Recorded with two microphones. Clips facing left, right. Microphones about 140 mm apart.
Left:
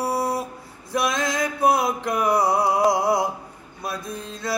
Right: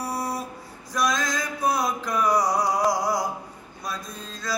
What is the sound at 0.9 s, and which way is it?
Male singing, 60° left (ahead or behind).